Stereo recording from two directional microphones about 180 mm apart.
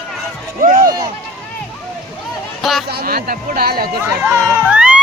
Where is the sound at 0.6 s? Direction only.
45° right (ahead or behind).